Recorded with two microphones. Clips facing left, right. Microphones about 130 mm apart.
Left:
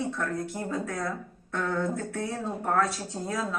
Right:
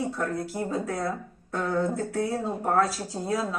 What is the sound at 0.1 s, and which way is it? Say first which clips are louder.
A woman's voice: right 2 dB; 35° right (ahead or behind).